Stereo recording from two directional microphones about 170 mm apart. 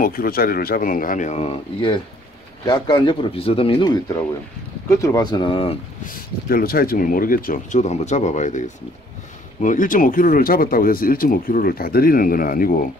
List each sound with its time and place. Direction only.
0.0 s speech: 60° left (ahead or behind); by 5.8 s 30° left (ahead or behind)
6.0 s speech: 60° left (ahead or behind)